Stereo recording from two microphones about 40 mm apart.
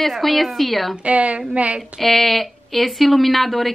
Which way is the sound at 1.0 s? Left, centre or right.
Right.